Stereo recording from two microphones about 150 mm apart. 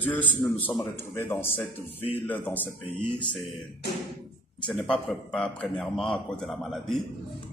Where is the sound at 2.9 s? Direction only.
35° left (ahead or behind).